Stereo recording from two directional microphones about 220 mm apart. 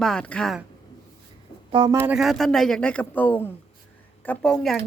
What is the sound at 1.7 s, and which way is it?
Speech, 15° right (ahead or behind).